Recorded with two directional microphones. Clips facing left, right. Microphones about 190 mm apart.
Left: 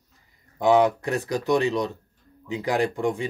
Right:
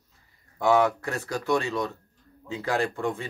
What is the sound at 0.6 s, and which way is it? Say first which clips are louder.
Speech: left 3 dB; 20° left (ahead or behind).